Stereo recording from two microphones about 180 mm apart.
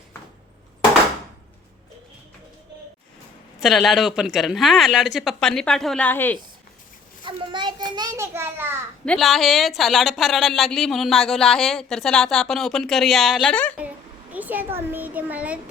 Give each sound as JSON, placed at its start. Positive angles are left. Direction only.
{"t": 3.6, "sound": "speech", "side_deg": 0}
{"t": 7.3, "sound": "a child's voice", "side_deg": -25}
{"t": 9.0, "sound": "speech", "side_deg": 0}
{"t": 14.3, "sound": "a child's voice", "side_deg": -10}